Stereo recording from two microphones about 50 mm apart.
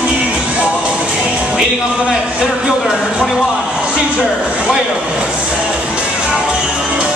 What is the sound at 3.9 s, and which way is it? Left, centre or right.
Speech, centre.